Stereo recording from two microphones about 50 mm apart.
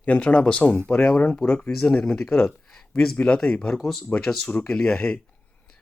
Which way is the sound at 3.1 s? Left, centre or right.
Centre.